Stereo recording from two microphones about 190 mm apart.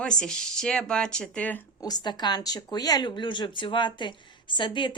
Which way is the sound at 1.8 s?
20° left (ahead or behind).